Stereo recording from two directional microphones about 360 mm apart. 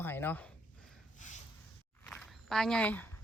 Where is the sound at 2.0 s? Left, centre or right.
Centre.